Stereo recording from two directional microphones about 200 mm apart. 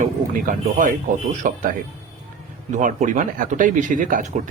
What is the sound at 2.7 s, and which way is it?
Speech, 40° right (ahead or behind).